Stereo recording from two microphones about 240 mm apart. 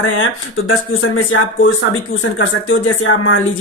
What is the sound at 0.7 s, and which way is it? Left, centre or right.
Speech, left.